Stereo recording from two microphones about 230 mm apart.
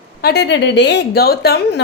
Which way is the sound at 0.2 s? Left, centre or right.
Left.